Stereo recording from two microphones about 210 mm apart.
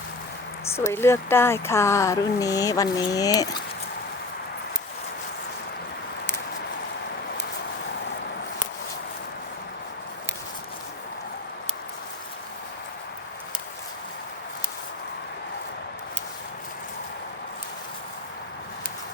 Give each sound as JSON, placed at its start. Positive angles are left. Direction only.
{"t": 0.6, "sound": "speech", "side_deg": 10}